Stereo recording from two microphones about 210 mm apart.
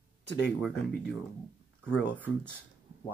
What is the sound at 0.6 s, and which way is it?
Speech, centre (ahead or behind).